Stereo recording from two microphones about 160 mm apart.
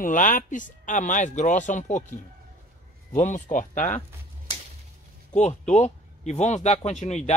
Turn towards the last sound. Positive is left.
turn(degrees=45)  # may be behind; listen again after turning